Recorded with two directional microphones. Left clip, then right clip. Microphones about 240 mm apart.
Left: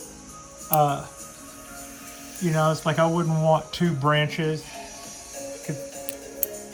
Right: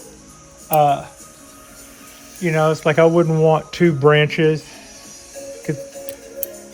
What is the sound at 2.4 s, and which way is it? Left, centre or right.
Speech, centre.